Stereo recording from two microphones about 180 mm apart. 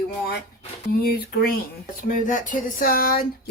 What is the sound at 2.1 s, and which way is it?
Speech, 45° left (ahead or behind).